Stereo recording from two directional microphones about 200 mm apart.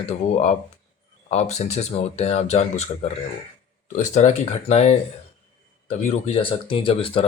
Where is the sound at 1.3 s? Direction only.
35° left (ahead or behind).